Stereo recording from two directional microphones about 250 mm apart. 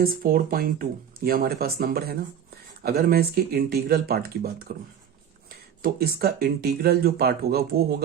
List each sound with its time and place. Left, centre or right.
0.0 s speech: right